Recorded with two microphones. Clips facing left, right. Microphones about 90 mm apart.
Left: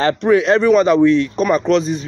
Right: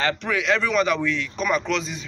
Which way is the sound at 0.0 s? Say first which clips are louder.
Left 10 dB; 35° left (ahead or behind).